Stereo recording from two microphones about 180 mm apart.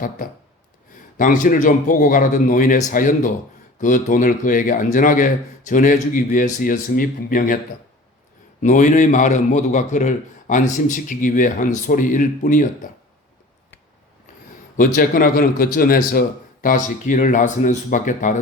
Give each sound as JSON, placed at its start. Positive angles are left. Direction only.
{"t": 0.2, "sound": "a man's voice", "side_deg": 45}
{"t": 8.6, "sound": "a man's voice", "side_deg": 45}
{"t": 14.8, "sound": "a man's voice", "side_deg": 50}